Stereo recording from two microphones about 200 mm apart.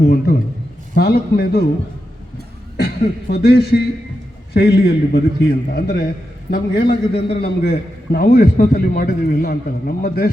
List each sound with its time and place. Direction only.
0.0 s a man's voice: 50° left (ahead or behind)
2.7 s a man's voice: 55° left (ahead or behind)